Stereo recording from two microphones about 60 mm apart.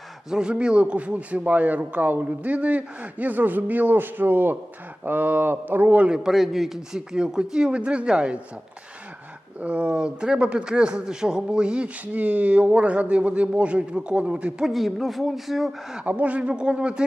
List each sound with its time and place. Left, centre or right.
0.3 s speech: centre; by 6.1 s right
6.1 s speech: centre
9.6 s speech: right
14.6 s speech: centre
16.0 s speech: right